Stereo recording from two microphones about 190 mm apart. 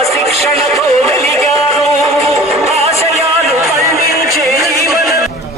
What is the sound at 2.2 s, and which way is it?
Music, 35° right (ahead or behind).